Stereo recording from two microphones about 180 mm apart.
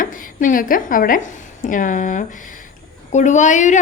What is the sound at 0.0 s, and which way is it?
A woman's voice, 45° left (ahead or behind).